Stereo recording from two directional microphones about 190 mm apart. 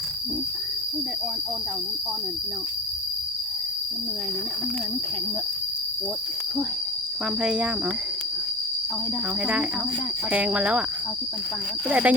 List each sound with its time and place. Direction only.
7.4 s speech: 5° right (ahead or behind)
10.3 s speech: 5° right (ahead or behind)
11.9 s speech: 10° right (ahead or behind)